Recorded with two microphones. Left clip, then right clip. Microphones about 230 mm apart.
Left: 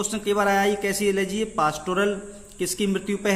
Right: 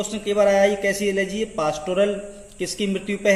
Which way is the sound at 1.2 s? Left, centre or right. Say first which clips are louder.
Even; centre.